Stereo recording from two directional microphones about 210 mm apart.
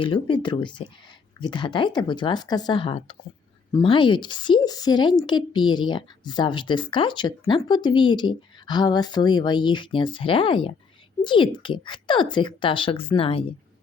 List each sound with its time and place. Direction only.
0.0 s a woman's voice: 25° left (ahead or behind)